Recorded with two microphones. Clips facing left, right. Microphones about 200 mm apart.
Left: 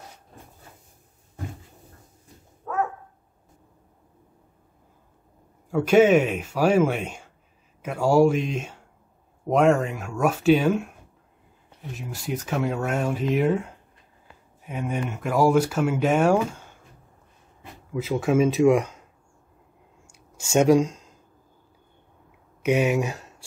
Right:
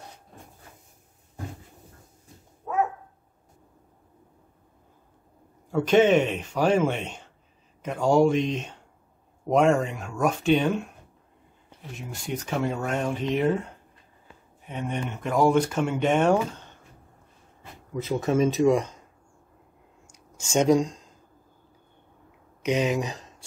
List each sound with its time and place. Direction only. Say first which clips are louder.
5.7 s speech: left 2 dB; 5° left (ahead or behind)
11.9 s speech: left 2 dB; 5° left (ahead or behind)
17.9 s speech: left 2 dB; 5° left (ahead or behind)
20.5 s speech: left 3 dB; 10° left (ahead or behind)
20.8 s speech: left 3 dB; 75° left (ahead or behind)
22.6 s speech: left 3 dB; 10° left (ahead or behind)